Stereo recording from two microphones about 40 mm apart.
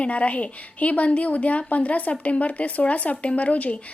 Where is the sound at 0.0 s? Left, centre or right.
Left.